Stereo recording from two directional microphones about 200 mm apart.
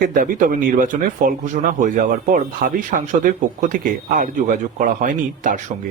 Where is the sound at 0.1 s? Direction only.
40° right (ahead or behind).